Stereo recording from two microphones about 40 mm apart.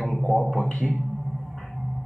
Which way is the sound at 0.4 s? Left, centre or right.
Centre.